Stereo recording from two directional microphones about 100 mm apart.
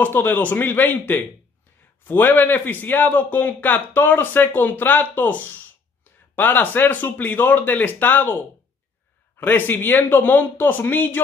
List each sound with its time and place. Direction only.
0.0 s a man's voice: 20° left (ahead or behind)
9.4 s a man's voice: 20° left (ahead or behind)